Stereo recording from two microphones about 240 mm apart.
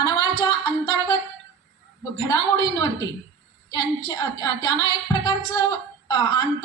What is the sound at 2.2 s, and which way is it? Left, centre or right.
Speech, centre.